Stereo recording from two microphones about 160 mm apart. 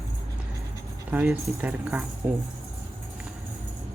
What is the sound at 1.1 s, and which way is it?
Speech, 15° right (ahead or behind).